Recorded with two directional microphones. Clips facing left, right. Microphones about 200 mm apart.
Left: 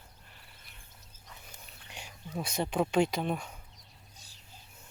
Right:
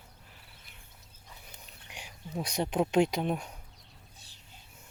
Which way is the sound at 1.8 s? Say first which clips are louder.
Right 1 dB; 15° right (ahead or behind).